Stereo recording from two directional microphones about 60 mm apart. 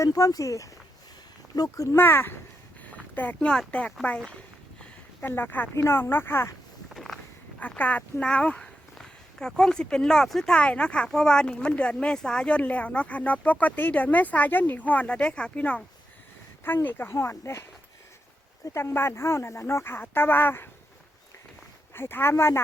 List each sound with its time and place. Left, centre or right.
0.0 s speech: left
1.5 s speech: left
2.0 s speech: left
2.8 s a sound: left
3.7 s speech: left
4.3 s a sound: centre
5.2 s speech: left
5.7 s speech: left
6.9 s vehicle: centre
7.8 s speech: left
16.6 s speech: left
17.1 s speech: left
21.9 s speech: left